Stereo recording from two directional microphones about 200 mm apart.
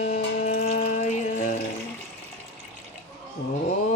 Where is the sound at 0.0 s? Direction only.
35° left (ahead or behind).